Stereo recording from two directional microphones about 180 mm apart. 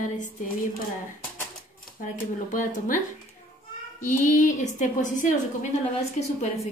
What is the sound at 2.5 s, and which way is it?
Speech, 45° left (ahead or behind).